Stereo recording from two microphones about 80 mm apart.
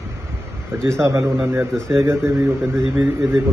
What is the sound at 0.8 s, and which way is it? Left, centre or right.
A man's voice, right.